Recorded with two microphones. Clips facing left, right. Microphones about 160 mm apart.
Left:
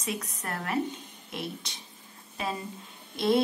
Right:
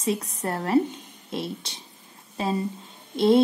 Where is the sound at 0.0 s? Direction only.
30° right (ahead or behind).